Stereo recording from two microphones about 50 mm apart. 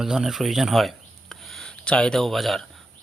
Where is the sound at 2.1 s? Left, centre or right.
Centre.